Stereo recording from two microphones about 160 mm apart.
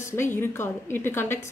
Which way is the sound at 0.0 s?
15° left (ahead or behind).